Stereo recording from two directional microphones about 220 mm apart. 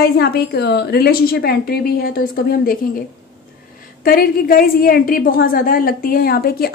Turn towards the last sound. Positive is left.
turn(degrees=45)  # may be behind; listen again after turning